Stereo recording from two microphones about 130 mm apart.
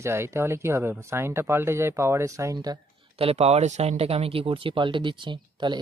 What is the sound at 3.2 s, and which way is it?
Speech, 50° right (ahead or behind).